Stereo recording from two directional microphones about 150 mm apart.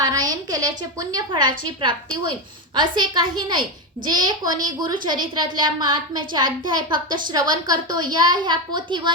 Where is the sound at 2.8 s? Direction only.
30° right (ahead or behind).